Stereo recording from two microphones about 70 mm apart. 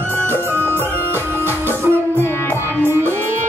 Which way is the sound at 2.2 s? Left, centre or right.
Left.